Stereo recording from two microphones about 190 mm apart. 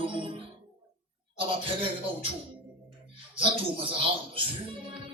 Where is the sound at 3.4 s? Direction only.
25° right (ahead or behind).